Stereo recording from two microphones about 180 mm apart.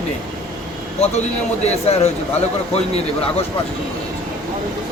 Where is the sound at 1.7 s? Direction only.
35° left (ahead or behind).